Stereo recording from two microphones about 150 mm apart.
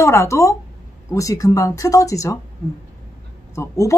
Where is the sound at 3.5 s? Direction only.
20° left (ahead or behind).